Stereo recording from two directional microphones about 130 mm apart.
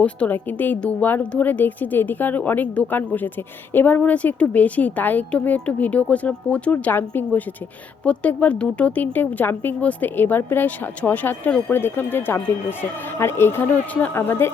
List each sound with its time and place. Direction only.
0.0 s a woman's voice: 10° left (ahead or behind)